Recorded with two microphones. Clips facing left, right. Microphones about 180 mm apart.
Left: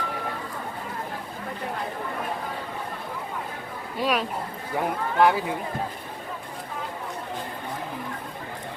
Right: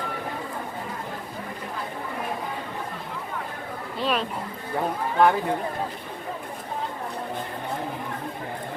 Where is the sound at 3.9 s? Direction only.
10° left (ahead or behind).